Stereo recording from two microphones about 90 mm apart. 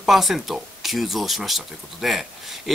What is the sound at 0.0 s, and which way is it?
Speech, centre (ahead or behind).